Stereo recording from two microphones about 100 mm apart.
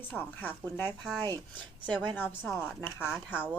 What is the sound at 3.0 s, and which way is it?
Speech, 10° right (ahead or behind).